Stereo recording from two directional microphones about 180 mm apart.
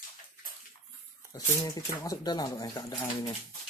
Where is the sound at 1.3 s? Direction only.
20° left (ahead or behind).